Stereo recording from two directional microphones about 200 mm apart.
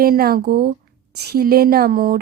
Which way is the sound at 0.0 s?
50° right (ahead or behind).